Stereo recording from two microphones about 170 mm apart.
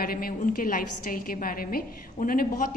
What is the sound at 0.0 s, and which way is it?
A woman's voice, 60° left (ahead or behind).